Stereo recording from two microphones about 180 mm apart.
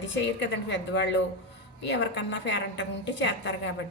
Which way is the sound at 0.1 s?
80° left.